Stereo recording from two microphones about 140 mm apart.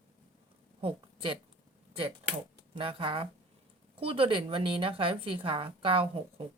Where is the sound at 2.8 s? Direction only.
40° right (ahead or behind).